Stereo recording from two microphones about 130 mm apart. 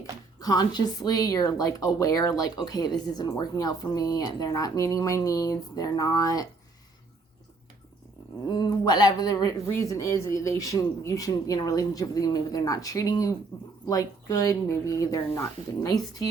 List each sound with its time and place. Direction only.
0.3 s a woman's voice: 30° left (ahead or behind)
8.4 s a woman's voice: 35° left (ahead or behind)